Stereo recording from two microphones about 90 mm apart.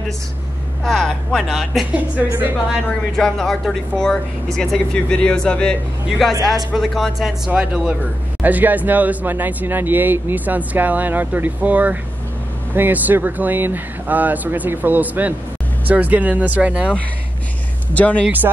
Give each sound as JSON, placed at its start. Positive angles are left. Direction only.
{"t": 0.8, "sound": "speech", "side_deg": 0}
{"t": 2.0, "sound": "speech", "side_deg": -20}
{"t": 3.2, "sound": "speech", "side_deg": 5}
{"t": 17.9, "sound": "speech", "side_deg": 15}